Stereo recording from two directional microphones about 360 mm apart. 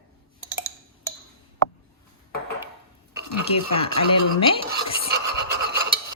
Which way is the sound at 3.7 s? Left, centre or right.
Centre.